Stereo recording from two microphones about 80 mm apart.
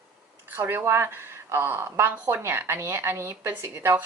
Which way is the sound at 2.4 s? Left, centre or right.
Right.